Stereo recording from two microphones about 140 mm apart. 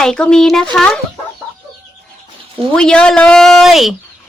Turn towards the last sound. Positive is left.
turn(degrees=0)  # may be behind; listen again after turning